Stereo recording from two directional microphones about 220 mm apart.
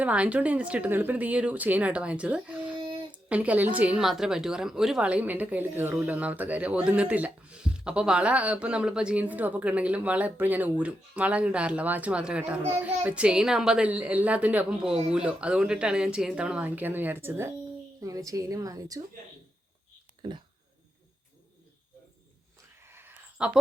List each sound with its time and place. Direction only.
0.0 s a woman's voice: 5° right (ahead or behind)
20.2 s speech: 20° right (ahead or behind)
22.8 s a sound: 10° right (ahead or behind)